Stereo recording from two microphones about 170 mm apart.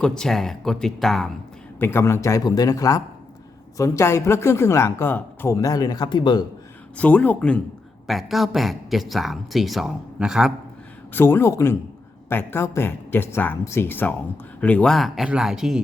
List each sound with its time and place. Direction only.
0.0 s speech: 5° left (ahead or behind)
1.8 s speech: 15° left (ahead or behind)
6.9 s speech: 10° left (ahead or behind)
11.1 s speech: 15° left (ahead or behind); by 15.8 s 5° right (ahead or behind)